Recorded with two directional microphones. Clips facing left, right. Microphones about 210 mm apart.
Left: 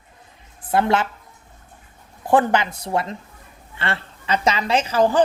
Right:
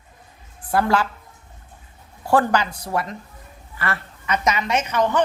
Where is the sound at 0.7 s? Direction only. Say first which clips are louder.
Left 1 dB; 25° left (ahead or behind).